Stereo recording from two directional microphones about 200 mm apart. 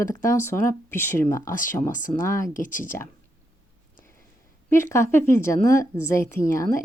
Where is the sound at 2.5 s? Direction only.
40° left (ahead or behind).